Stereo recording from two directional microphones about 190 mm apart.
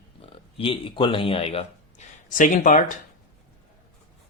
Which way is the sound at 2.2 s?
45° left (ahead or behind).